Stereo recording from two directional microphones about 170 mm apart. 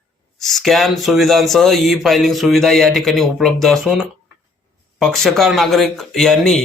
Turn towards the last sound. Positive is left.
turn(degrees=0)  # may be behind; listen again after turning